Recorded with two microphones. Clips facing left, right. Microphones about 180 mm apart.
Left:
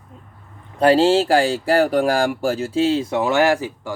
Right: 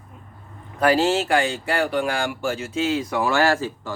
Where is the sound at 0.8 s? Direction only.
30° left (ahead or behind).